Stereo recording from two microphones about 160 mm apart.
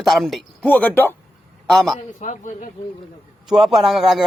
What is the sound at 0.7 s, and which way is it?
Speech, 10° left (ahead or behind).